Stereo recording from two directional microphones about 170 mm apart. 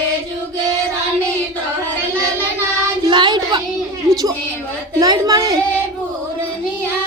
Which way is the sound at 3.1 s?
25° right (ahead or behind).